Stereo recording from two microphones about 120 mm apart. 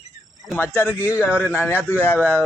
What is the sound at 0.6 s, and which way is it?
Speech, 20° left (ahead or behind).